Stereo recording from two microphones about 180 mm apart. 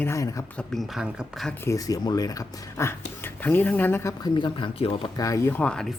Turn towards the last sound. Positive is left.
turn(degrees=5)  # may be behind; listen again after turning